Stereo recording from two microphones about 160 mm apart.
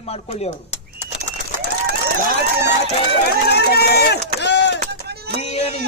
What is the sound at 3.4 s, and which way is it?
Run, 90° left.